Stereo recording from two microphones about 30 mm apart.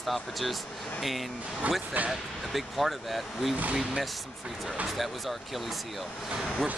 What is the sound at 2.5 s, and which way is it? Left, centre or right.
Speech, centre.